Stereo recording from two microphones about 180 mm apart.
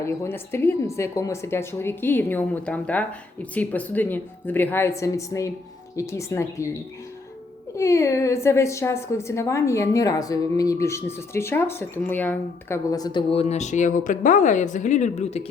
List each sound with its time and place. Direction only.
0.0 s a woman's voice: 15° left (ahead or behind)
7.8 s a woman's voice: 15° left (ahead or behind); by 15.4 s 35° left (ahead or behind)